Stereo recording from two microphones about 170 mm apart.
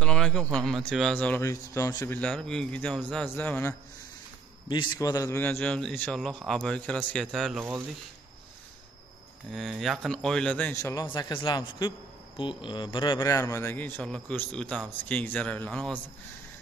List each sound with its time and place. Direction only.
0.0 s a sound: 5° left (ahead or behind)
0.6 s a man's voice: 5° left (ahead or behind)
2.1 s a man's voice: 5° left (ahead or behind)
4.6 s a man's voice: 25° left (ahead or behind); by 7.6 s centre (ahead or behind)
9.5 s a man's voice: centre (ahead or behind)
10.8 s a man's voice: 20° left (ahead or behind)